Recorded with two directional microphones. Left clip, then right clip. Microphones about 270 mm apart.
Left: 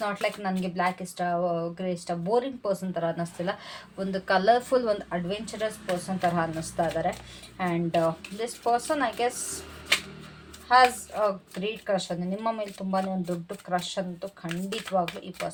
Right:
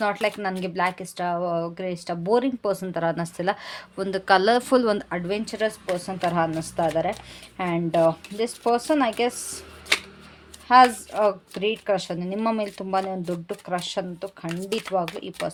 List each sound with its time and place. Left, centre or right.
0.0 s speech: right
10.7 s speech: right